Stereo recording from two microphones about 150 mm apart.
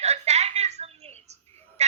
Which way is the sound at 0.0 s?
45° right (ahead or behind).